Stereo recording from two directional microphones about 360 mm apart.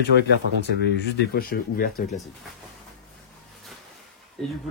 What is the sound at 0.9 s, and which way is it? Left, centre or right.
Speech, left.